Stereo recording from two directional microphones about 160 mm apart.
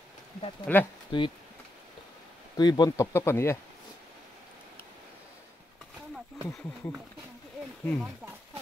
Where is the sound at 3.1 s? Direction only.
15° left (ahead or behind).